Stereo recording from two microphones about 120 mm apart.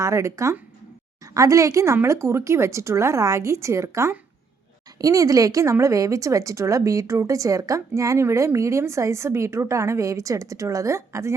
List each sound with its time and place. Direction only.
0.0 s a woman's voice: 25° right (ahead or behind)